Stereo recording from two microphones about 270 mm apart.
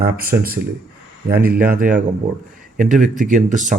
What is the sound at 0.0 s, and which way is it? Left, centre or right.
Speech, right.